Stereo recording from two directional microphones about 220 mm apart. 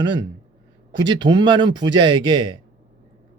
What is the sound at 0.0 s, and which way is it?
Speech, 20° right (ahead or behind).